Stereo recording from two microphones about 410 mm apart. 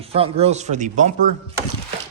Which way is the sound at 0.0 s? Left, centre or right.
Centre.